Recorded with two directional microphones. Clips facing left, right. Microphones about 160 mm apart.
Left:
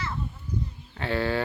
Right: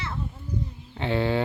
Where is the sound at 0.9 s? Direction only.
20° right (ahead or behind).